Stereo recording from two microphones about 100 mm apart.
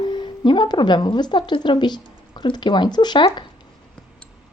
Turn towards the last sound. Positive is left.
turn(degrees=55)  # may be behind; listen again after turning